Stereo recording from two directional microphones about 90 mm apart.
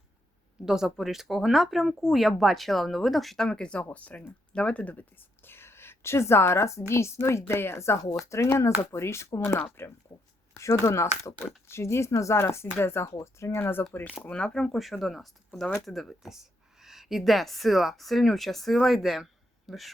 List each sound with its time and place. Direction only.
0.6 s speech: 5° right (ahead or behind); by 5.0 s 15° left (ahead or behind)
5.5 s a woman's voice: 25° left (ahead or behind)
14.2 s speech: 10° left (ahead or behind)